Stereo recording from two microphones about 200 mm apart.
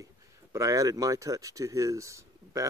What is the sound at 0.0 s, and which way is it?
Speech, 15° right (ahead or behind).